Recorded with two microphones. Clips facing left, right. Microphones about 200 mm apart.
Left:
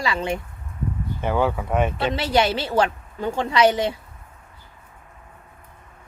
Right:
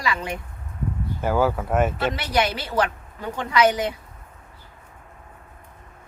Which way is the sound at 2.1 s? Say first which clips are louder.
Left 3 dB; 25° left (ahead or behind).